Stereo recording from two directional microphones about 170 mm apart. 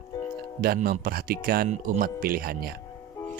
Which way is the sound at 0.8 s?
60° right (ahead or behind).